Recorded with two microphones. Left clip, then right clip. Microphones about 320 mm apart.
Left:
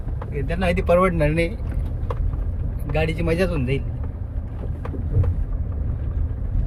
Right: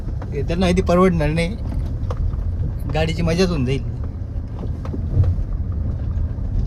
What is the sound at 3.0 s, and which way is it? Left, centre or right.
Speech, centre.